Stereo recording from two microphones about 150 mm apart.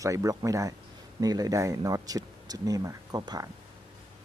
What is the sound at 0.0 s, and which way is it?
Speech, 20° right (ahead or behind).